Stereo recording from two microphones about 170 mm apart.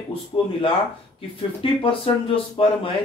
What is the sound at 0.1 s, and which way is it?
Speech, 30° left (ahead or behind).